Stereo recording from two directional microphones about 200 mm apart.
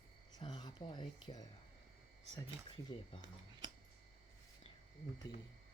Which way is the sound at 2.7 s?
25° left (ahead or behind).